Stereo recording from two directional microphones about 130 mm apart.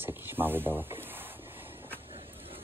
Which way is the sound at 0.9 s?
15° right (ahead or behind).